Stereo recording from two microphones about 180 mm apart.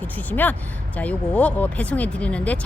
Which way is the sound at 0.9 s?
5° left (ahead or behind).